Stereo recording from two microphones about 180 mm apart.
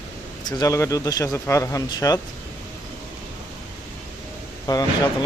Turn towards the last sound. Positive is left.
turn(degrees=20)  # may be behind; listen again after turning